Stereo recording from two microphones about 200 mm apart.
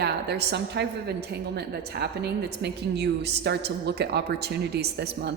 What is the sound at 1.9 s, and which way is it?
A woman's voice, 55° right (ahead or behind).